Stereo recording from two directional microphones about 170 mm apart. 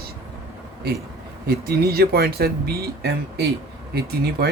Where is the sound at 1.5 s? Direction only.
65° right (ahead or behind).